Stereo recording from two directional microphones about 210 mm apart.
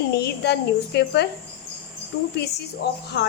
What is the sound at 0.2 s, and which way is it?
Speech, 50° left (ahead or behind).